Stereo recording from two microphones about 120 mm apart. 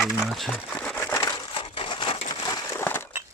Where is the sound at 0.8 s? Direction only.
15° left (ahead or behind).